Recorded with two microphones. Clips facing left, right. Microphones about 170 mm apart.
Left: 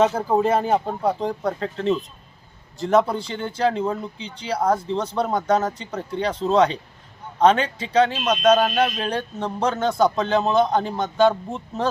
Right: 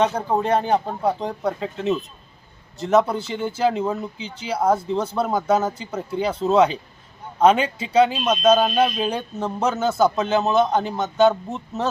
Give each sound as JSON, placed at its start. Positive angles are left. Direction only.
{"t": 0.0, "sound": "speech", "side_deg": 5}